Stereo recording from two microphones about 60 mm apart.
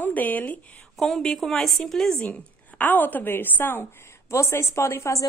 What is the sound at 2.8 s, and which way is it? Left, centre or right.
A woman's voice, left.